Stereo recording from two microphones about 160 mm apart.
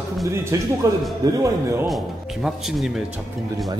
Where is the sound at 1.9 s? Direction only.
Centre (ahead or behind).